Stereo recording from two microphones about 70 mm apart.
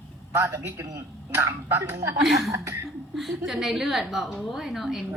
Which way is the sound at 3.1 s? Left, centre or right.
Centre.